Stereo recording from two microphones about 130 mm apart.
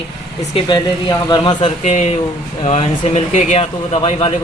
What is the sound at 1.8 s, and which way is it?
Speech, 60° left (ahead or behind).